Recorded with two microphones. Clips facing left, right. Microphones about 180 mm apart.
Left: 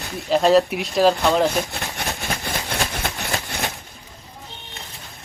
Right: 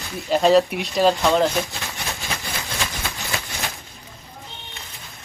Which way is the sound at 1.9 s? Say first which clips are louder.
Left 4 dB; 60° left (ahead or behind).